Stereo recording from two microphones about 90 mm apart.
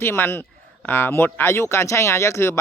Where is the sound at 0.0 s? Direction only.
25° left (ahead or behind).